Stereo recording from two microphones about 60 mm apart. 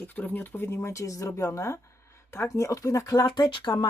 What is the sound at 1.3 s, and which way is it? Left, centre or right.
Speech, left.